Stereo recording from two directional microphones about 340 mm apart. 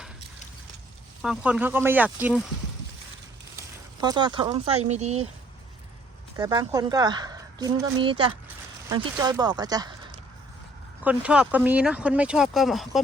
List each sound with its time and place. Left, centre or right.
1.2 s speech: centre
4.0 s speech: centre
6.3 s speech: centre
11.0 s speech: centre